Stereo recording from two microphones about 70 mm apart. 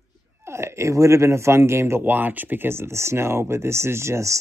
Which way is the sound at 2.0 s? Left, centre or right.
Right.